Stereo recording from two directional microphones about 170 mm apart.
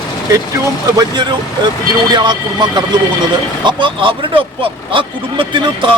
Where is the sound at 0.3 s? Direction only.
15° right (ahead or behind).